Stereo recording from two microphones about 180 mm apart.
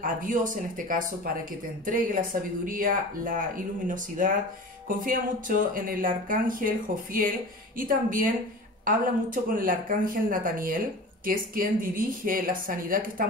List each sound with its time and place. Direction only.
0.0 s speech: 50° right (ahead or behind)
4.8 s music: 50° right (ahead or behind)
5.8 s speech: 50° right (ahead or behind)